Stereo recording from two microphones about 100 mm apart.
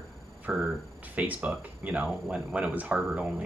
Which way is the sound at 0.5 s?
15° right (ahead or behind).